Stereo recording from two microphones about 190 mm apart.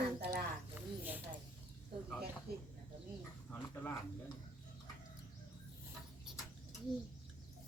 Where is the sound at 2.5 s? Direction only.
55° right (ahead or behind).